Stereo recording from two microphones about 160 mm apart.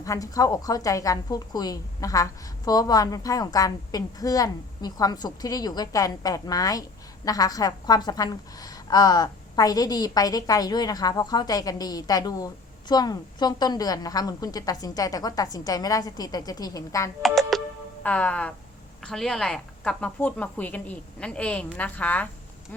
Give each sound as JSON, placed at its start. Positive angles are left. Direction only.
{"t": 0.0, "sound": "a woman's voice", "side_deg": 20}
{"t": 17.2, "sound": "music", "side_deg": 0}
{"t": 18.0, "sound": "speech", "side_deg": 10}